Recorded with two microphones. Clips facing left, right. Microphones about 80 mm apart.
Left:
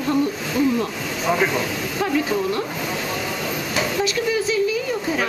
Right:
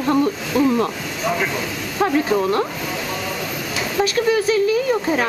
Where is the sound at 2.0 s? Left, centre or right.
Right.